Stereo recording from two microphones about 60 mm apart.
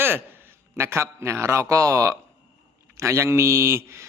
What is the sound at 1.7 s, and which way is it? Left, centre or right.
Speech, right.